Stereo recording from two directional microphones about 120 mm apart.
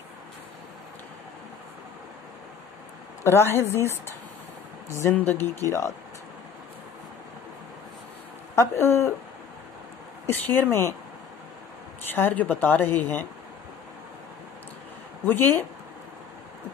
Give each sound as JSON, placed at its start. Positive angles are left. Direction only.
{"t": 3.3, "sound": "speech", "side_deg": 20}
{"t": 8.5, "sound": "speech", "side_deg": 20}
{"t": 10.2, "sound": "speech", "side_deg": 15}
{"t": 12.1, "sound": "a woman's voice", "side_deg": 15}
{"t": 15.2, "sound": "a woman's voice", "side_deg": 15}